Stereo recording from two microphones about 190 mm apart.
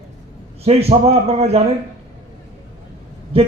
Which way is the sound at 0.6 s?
30° right (ahead or behind).